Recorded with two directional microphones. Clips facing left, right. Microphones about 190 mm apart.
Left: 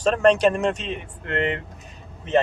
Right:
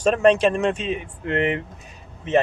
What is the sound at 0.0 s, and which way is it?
Speech, 5° right (ahead or behind).